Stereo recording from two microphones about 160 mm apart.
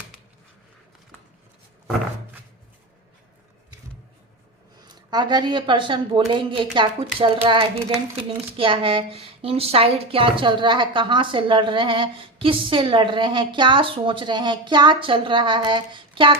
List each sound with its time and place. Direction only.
5.1 s a woman's voice: 25° right (ahead or behind)